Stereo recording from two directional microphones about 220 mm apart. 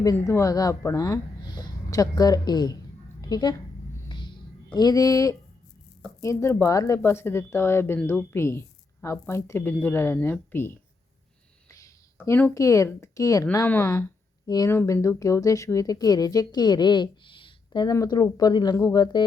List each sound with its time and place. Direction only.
0.0 s a woman's voice: 15° left (ahead or behind)
3.2 s a sound: 15° left (ahead or behind)
6.1 s speech: 10° left (ahead or behind)